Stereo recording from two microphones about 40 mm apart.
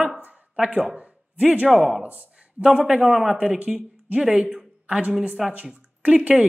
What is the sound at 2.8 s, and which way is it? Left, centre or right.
Speech, right.